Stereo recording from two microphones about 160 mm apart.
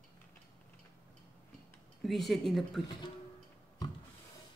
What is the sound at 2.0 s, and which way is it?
Speech, centre (ahead or behind).